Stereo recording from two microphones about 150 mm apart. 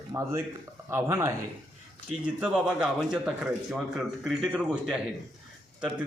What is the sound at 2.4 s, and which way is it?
A man's voice, 5° right (ahead or behind).